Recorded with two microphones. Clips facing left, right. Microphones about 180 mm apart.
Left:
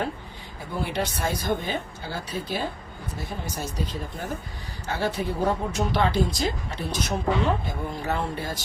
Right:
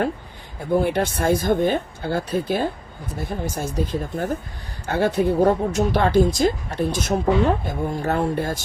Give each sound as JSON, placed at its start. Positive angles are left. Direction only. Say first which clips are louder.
{"t": 0.8, "sound": "speech", "louder": "right 5 dB", "side_deg": -50}